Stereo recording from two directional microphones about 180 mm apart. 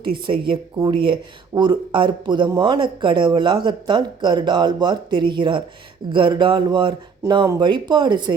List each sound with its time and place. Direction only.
0.3 s speech: 30° right (ahead or behind)